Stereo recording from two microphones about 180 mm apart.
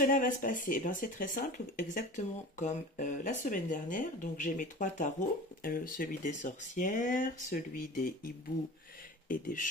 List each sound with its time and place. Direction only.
0.0 s speech: 50° left (ahead or behind)
9.3 s speech: 50° left (ahead or behind)